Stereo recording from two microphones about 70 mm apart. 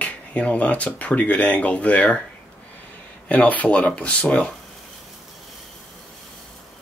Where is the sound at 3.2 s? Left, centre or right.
Left.